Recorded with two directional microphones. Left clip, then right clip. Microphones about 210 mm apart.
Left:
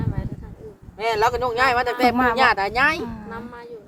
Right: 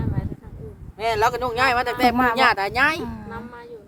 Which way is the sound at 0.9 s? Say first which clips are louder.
Even; 25° right (ahead or behind).